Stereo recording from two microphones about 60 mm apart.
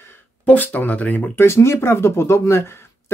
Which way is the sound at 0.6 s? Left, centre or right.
Left.